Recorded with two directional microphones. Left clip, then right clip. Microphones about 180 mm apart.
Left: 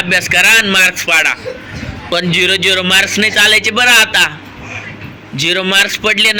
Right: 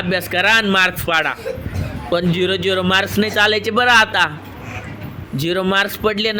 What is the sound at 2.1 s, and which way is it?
A man's voice, 30° right (ahead or behind).